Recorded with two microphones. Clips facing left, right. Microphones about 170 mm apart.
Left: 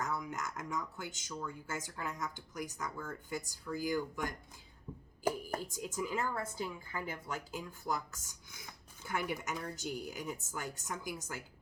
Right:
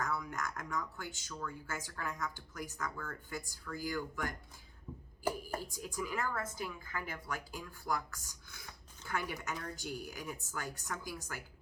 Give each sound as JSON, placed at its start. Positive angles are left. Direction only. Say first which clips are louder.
{"t": 0.0, "sound": "speech", "louder": "even", "side_deg": 20}